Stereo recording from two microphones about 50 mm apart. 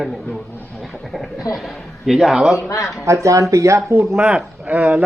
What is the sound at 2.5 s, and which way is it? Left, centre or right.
Speech, left.